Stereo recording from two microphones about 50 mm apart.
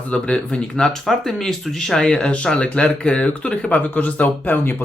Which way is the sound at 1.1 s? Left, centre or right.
Centre.